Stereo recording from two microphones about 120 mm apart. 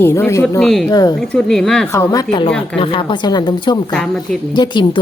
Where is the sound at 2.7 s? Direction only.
45° left (ahead or behind).